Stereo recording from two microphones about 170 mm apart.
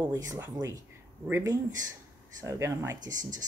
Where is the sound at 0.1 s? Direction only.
20° right (ahead or behind).